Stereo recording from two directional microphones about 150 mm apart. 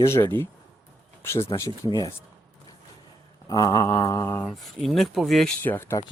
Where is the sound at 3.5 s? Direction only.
25° left (ahead or behind).